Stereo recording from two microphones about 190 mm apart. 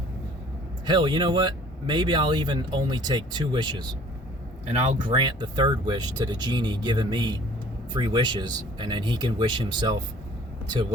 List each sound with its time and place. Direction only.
0.9 s speech: 25° right (ahead or behind)
4.7 s speech: 35° right (ahead or behind)